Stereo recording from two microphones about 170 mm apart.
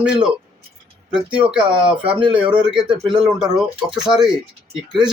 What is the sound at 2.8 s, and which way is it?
Speech, 25° right (ahead or behind).